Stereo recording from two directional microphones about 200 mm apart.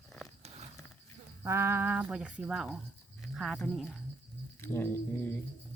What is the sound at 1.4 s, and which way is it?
Speech, 15° right (ahead or behind).